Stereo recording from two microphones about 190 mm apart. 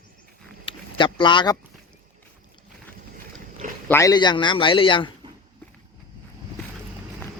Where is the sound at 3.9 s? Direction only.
15° left (ahead or behind).